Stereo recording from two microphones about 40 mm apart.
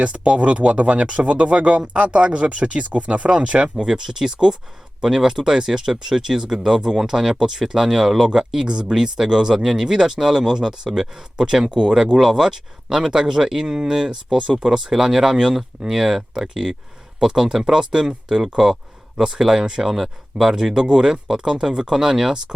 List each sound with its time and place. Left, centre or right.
0.0 s speech: right
4.0 s speech: centre